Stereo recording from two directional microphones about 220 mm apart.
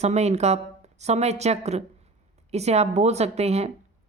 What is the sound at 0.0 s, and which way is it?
Speech, 30° right (ahead or behind).